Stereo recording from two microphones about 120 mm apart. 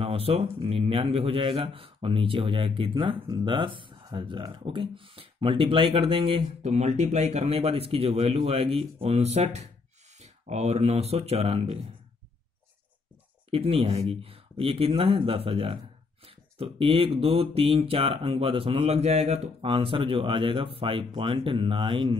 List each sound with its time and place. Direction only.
0.0 s speech: 50° right (ahead or behind)
6.6 s speech: 65° right (ahead or behind)
13.5 s speech: 50° right (ahead or behind)